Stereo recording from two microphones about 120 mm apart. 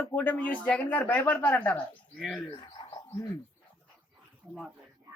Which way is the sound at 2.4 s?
45° left (ahead or behind).